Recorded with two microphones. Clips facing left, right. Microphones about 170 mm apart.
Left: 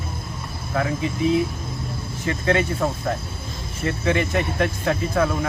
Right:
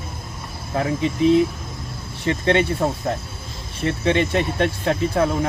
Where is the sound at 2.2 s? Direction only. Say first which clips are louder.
Right 3 dB; 25° right (ahead or behind).